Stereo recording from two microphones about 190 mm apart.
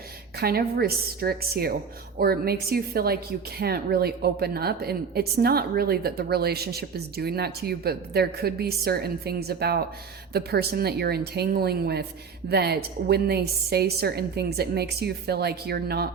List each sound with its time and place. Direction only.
0.3 s a woman's voice: 55° right (ahead or behind)